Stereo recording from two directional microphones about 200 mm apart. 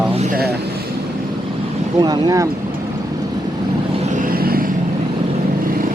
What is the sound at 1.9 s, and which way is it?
Speech, 20° right (ahead or behind).